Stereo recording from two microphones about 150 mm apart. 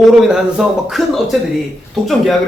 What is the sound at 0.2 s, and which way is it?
A man's voice, 5° right (ahead or behind).